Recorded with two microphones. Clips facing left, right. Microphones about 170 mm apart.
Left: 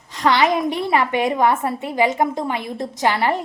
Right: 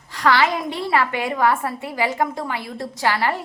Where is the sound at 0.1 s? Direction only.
20° left (ahead or behind).